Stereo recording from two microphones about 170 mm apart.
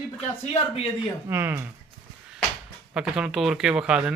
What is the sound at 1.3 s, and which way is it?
Speech, 15° right (ahead or behind).